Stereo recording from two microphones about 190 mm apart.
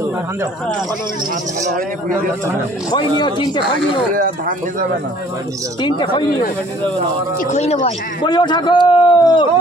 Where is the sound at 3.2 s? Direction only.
25° left (ahead or behind).